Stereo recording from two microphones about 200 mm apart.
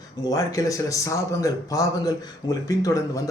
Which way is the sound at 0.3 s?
15° left (ahead or behind).